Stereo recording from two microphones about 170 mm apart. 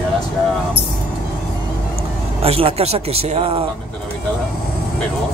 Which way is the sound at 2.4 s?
35° right (ahead or behind).